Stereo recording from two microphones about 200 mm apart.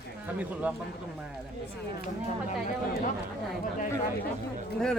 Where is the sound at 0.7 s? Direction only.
5° right (ahead or behind).